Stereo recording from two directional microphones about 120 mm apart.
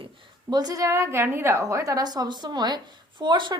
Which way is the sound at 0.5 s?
30° right (ahead or behind).